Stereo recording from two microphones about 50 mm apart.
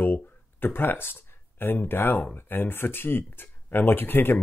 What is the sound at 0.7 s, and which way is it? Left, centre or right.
Speech, left.